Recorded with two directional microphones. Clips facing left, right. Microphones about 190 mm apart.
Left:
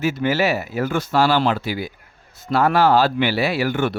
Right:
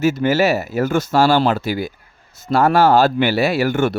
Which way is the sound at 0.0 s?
40° right (ahead or behind).